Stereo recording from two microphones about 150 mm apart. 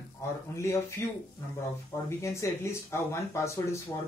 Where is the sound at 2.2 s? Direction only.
20° left (ahead or behind).